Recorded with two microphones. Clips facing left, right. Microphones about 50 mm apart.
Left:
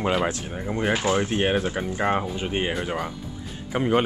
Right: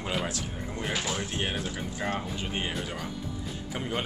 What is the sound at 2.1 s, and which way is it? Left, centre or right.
Speech, left.